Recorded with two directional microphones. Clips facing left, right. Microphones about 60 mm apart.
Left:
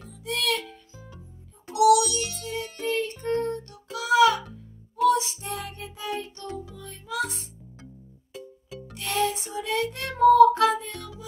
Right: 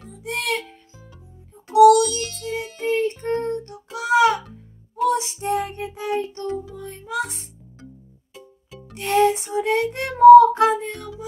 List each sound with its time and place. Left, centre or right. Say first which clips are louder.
0.1 s music: right 2 dB; right
1.9 s music: right 5 dB; centre
2.9 s child singing: right 5 dB; right
5.0 s music: right 1 dB; right
8.9 s child singing: right 9 dB; right